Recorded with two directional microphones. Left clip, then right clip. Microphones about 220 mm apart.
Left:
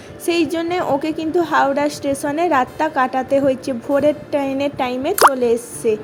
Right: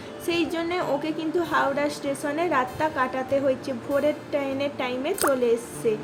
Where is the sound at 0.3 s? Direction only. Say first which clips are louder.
Left 7 dB; 30° left (ahead or behind).